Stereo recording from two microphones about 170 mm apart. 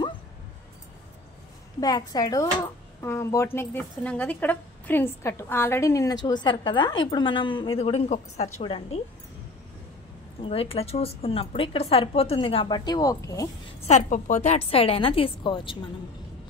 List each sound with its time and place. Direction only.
1.8 s speech: 25° left (ahead or behind)
10.4 s a woman's voice: 35° left (ahead or behind)
13.7 s a woman's voice: 40° left (ahead or behind)